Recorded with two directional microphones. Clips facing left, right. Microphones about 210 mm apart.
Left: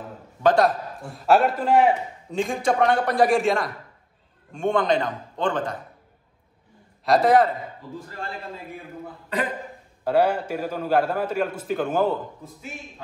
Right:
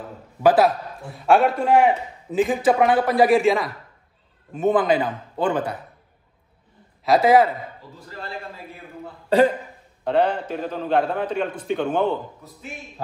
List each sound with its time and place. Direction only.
0.4 s a man's voice: 5° right (ahead or behind)
7.1 s a man's voice: centre (ahead or behind)
9.3 s speech: 30° right (ahead or behind)
10.0 s a man's voice: 10° left (ahead or behind)